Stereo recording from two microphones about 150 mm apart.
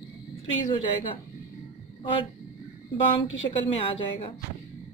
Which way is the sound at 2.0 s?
35° left (ahead or behind).